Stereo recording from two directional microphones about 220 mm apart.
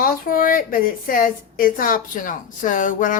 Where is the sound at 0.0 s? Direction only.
40° left (ahead or behind).